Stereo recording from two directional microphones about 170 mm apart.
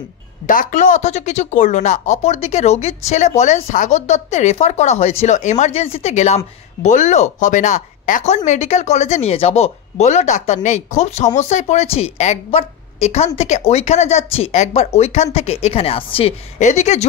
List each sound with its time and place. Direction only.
0.5 s a woman's voice: 50° left (ahead or behind)